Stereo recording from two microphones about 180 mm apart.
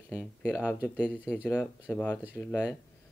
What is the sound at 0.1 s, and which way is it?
Speech, 10° left (ahead or behind).